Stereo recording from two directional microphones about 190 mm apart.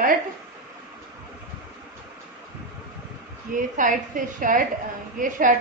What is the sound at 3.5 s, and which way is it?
A woman's voice, 45° right (ahead or behind).